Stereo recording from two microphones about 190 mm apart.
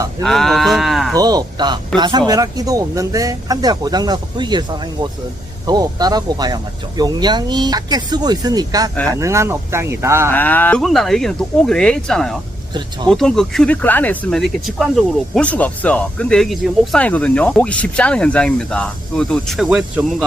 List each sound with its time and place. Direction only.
0.2 s sheep: centre (ahead or behind)
1.1 s speech: 20° right (ahead or behind)
10.3 s speech: 10° left (ahead or behind)